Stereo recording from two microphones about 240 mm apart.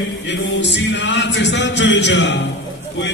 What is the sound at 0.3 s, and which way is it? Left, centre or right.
Music, left.